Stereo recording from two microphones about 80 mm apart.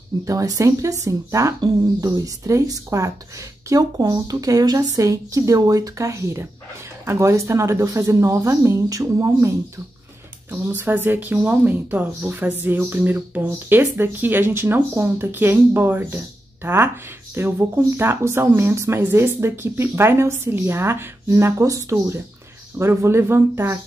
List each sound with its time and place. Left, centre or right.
0.2 s speech: right
4.0 s speech: right
10.5 s speech: right